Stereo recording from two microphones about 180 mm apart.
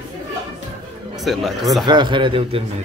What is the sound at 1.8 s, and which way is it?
Speech, 25° right (ahead or behind).